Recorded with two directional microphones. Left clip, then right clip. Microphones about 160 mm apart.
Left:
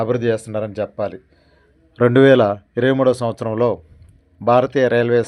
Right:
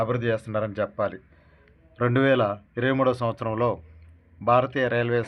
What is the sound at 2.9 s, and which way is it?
Speech, 40° left (ahead or behind).